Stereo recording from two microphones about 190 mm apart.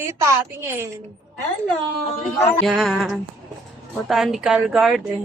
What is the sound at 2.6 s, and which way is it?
Speech, centre (ahead or behind).